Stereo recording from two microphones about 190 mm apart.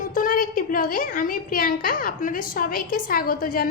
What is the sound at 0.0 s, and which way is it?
A woman's voice, 45° left (ahead or behind).